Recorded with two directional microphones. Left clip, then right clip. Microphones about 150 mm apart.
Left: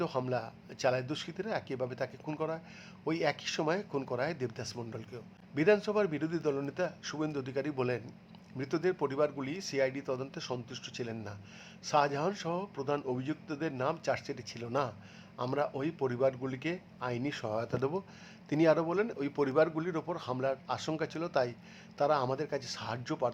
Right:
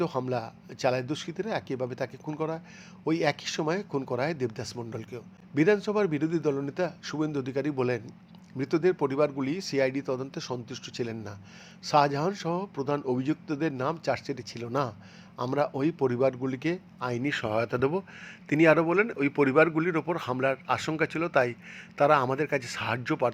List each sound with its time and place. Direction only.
0.3 s speech: 20° right (ahead or behind)
2.3 s speech: centre (ahead or behind)
3.0 s a man's voice: 20° right (ahead or behind)